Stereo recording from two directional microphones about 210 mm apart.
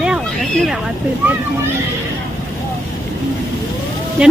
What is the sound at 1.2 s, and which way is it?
Speech, 5° right (ahead or behind).